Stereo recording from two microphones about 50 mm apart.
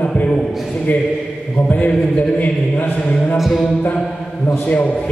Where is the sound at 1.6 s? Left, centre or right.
Left.